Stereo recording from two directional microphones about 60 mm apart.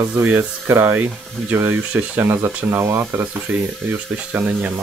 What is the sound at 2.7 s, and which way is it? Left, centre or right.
Speech, right.